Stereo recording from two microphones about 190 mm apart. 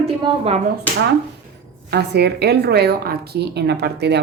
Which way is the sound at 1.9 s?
60° right (ahead or behind).